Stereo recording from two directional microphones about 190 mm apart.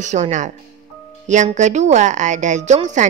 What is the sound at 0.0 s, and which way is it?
Speech, 40° right (ahead or behind).